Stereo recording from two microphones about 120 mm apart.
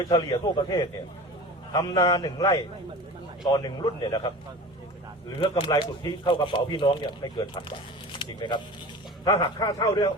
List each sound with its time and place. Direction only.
0.1 s speech: 35° left (ahead or behind)
5.4 s speech: 45° left (ahead or behind)